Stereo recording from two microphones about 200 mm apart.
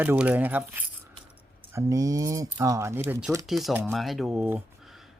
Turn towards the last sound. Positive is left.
turn(degrees=-5)  # may be behind; listen again after turning